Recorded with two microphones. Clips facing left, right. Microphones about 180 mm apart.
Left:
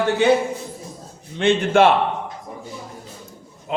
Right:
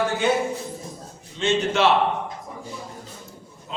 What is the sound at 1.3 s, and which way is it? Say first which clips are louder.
Speech: left 6 dB; 55° left (ahead or behind).